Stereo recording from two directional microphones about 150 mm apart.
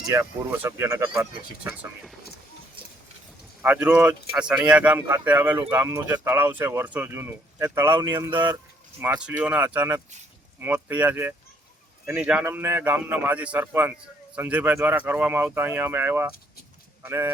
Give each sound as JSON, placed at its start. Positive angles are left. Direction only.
{"t": 0.1, "sound": "speech", "side_deg": -15}
{"t": 1.2, "sound": "speech", "side_deg": -10}
{"t": 3.6, "sound": "speech", "side_deg": -10}